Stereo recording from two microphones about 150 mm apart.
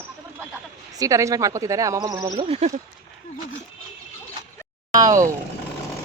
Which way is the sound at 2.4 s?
45° right (ahead or behind).